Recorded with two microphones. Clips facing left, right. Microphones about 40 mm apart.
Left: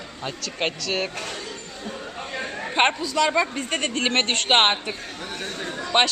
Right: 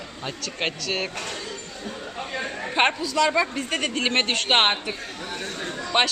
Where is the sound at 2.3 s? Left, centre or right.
Centre.